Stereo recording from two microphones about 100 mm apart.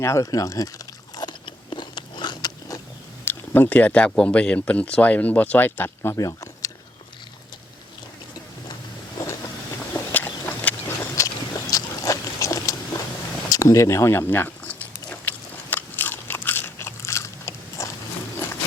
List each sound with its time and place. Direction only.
0.0 s biting: 30° left (ahead or behind)
3.2 s speech: 20° left (ahead or behind)
9.1 s vehicle: 35° left (ahead or behind)
9.9 s a sound: 20° left (ahead or behind)
11.1 s a sound: 35° left (ahead or behind); by 15.3 s 15° left (ahead or behind)
15.7 s biting: 20° left (ahead or behind)